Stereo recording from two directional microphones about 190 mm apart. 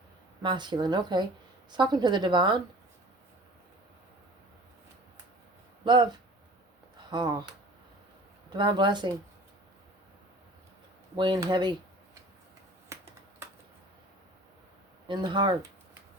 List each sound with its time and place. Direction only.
0.4 s a woman's voice: 25° right (ahead or behind)
5.8 s a woman's voice: 25° right (ahead or behind)
8.4 s a woman's voice: 25° right (ahead or behind)
11.2 s a woman's voice: 20° right (ahead or behind)
12.9 s finger snapping: 15° right (ahead or behind)
15.0 s a woman's voice: 25° right (ahead or behind)